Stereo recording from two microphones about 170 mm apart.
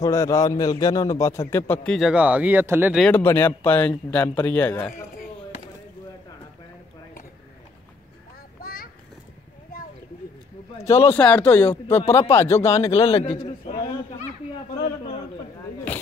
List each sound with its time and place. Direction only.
0.0 s a man's voice: 20° left (ahead or behind); by 3.0 s 10° right (ahead or behind)
3.0 s a man's voice: 10° left (ahead or behind)
8.5 s a sound: 60° left (ahead or behind)
10.8 s a man's voice: 15° left (ahead or behind)
13.0 s a man's voice: 35° left (ahead or behind)